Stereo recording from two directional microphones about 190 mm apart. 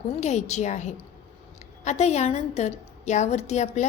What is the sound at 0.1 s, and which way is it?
A woman's voice, 35° left (ahead or behind).